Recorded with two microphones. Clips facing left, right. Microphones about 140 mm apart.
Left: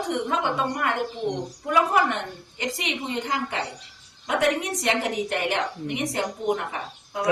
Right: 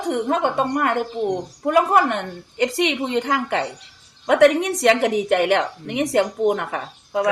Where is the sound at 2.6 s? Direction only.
75° right (ahead or behind).